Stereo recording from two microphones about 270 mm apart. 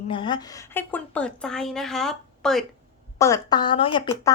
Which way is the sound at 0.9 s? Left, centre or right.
Centre.